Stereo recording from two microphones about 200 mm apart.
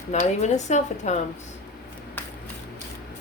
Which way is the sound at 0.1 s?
35° left (ahead or behind).